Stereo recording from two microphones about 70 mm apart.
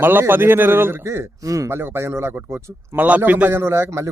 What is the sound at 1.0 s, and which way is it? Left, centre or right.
Speech, right.